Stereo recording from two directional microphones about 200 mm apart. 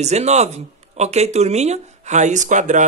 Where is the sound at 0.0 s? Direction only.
35° right (ahead or behind).